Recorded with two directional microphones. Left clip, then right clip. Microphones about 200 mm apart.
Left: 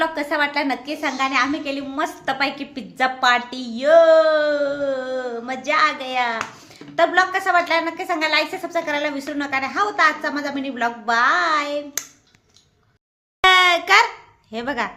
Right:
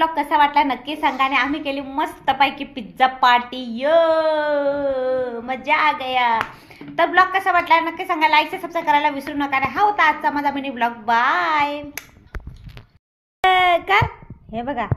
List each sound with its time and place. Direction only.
0.0 s a woman's voice: 10° left (ahead or behind)
13.4 s a child's voice: 10° left (ahead or behind)